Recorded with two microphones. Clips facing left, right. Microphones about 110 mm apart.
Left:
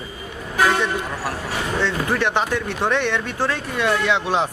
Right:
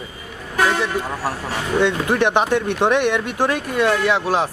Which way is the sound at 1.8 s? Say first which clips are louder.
Right 5 dB; 15° right (ahead or behind).